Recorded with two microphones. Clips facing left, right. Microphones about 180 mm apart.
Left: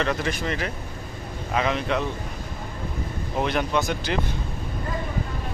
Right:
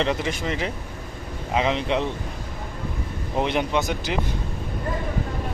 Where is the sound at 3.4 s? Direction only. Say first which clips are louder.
Even; 20° right (ahead or behind).